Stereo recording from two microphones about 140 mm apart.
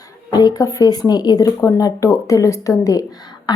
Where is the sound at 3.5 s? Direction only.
30° left (ahead or behind).